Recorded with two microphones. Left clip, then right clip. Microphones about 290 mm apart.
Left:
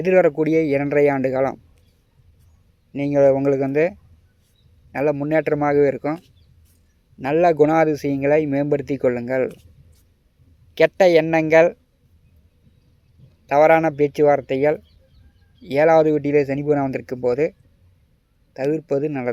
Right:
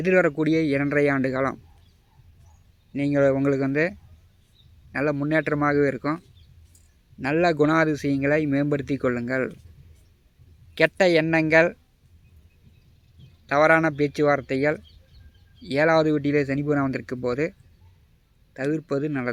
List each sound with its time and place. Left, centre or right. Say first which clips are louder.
0.0 s speech: left 5 dB; centre
2.9 s speech: left 5 dB; centre
10.8 s speech: left 5 dB; centre
13.5 s speech: left 4 dB; centre
18.5 s speech: left 5 dB; centre